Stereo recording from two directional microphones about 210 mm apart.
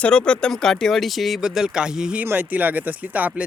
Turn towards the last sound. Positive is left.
turn(degrees=-5)  # may be behind; listen again after turning